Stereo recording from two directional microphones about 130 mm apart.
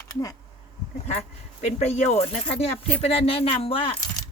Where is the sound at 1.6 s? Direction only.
60° left (ahead or behind).